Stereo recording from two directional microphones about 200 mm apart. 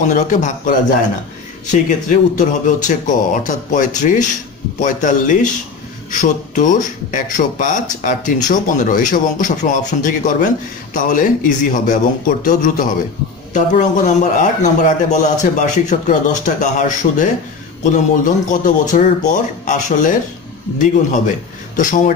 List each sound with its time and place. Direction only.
0.0 s speech: 40° left (ahead or behind)
21.7 s speech: 40° left (ahead or behind)